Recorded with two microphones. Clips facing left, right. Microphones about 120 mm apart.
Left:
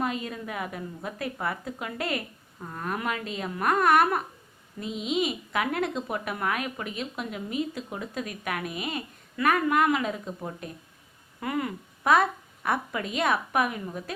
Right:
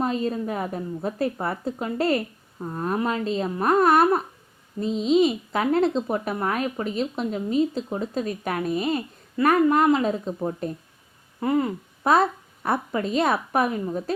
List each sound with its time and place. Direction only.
0.0 s a woman's voice: 35° right (ahead or behind)